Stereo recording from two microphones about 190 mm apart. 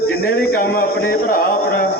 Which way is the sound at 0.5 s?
55° left (ahead or behind).